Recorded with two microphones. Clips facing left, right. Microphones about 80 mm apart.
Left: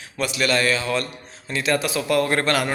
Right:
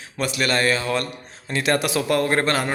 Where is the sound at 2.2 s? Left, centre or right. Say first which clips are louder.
Even; right.